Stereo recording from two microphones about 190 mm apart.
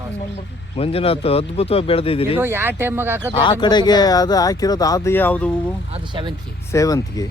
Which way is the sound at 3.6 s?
20° left (ahead or behind).